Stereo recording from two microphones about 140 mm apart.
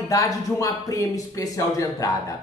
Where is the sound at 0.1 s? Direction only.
25° left (ahead or behind).